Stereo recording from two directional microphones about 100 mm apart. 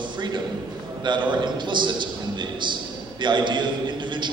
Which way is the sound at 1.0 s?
50° right (ahead or behind).